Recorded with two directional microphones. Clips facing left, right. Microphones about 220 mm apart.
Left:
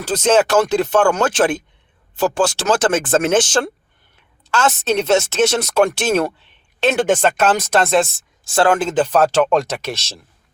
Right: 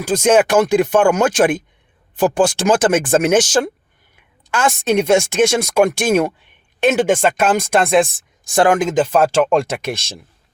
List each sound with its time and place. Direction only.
0.0 s speech: 10° right (ahead or behind)